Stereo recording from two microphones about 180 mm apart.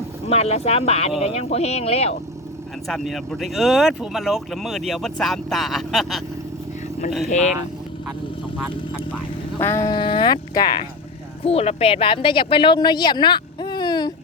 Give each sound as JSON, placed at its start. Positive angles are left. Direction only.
{"t": 0.3, "sound": "speech", "side_deg": 35}
{"t": 2.8, "sound": "speech", "side_deg": 0}
{"t": 7.3, "sound": "speech", "side_deg": 40}
{"t": 9.6, "sound": "speech", "side_deg": 15}
{"t": 11.4, "sound": "speech", "side_deg": 35}